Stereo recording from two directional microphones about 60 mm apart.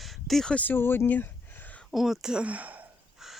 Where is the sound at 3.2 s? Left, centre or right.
Centre.